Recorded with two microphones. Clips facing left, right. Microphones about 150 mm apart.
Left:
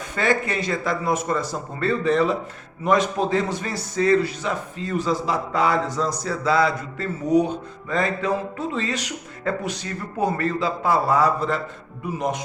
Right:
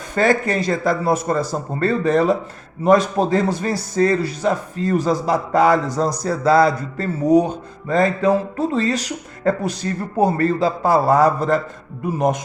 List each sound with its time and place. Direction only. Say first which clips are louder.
0.2 s music: right 5 dB; 40° right (ahead or behind)